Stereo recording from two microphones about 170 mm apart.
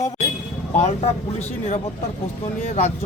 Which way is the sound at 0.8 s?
40° left (ahead or behind).